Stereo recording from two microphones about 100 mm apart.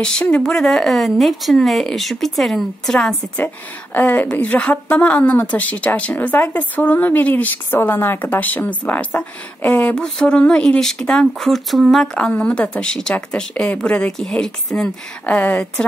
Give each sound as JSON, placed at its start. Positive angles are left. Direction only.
{"t": 0.0, "sound": "speech", "side_deg": 10}
{"t": 3.9, "sound": "a woman's voice", "side_deg": 20}